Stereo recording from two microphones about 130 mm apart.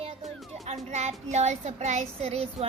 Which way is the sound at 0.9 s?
60° right (ahead or behind).